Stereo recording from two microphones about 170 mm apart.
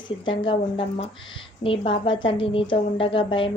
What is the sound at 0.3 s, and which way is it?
A woman's voice, 30° left (ahead or behind).